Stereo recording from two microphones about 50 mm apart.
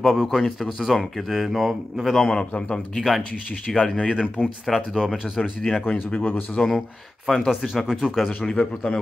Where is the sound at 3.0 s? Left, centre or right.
Centre.